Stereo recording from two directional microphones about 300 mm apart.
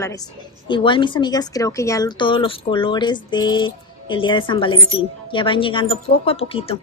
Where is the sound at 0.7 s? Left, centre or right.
Centre.